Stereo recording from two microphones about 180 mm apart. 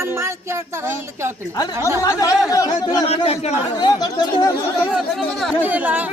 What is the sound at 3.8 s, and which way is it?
Speech, 20° left (ahead or behind).